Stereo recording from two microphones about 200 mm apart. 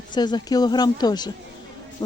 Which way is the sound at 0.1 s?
20° left (ahead or behind).